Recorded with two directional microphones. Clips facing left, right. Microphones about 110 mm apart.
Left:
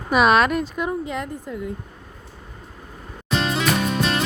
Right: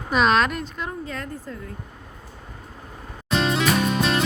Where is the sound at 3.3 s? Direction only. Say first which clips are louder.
Even; centre (ahead or behind).